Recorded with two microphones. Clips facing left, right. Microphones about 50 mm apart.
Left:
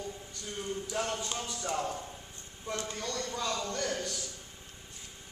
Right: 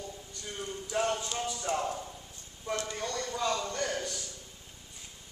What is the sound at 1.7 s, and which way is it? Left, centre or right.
Speech, right.